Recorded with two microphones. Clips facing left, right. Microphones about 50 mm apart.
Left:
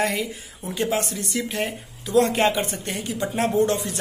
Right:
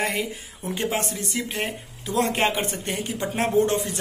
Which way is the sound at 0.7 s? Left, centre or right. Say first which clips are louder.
Left 3 dB; right.